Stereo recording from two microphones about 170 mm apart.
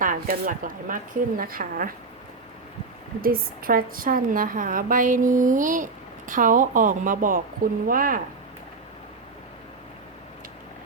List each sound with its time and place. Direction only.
0.0 s speech: 55° right (ahead or behind)
3.2 s a woman's voice: 60° right (ahead or behind)